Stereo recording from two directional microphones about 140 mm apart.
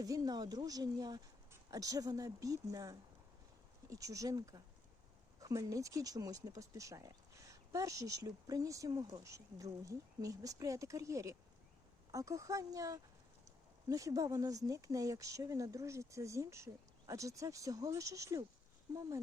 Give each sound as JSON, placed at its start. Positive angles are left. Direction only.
{"t": 0.0, "sound": "speech", "side_deg": -25}